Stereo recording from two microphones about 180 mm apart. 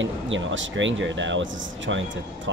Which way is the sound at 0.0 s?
90° right.